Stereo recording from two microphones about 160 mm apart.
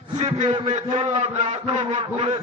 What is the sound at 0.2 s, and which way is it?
A man's voice, 35° right (ahead or behind).